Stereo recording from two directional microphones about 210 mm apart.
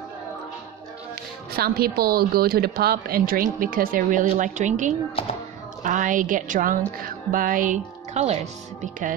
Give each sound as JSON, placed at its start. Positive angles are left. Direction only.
{"t": 1.8, "sound": "a woman's voice", "side_deg": -45}